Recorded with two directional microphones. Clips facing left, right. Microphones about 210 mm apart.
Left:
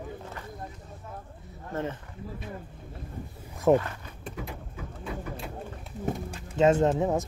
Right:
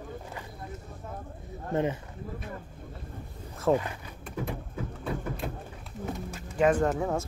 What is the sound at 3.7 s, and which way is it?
Speech, 15° left (ahead or behind).